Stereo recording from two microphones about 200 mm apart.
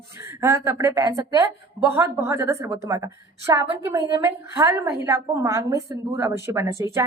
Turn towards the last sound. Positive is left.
turn(degrees=-15)  # may be behind; listen again after turning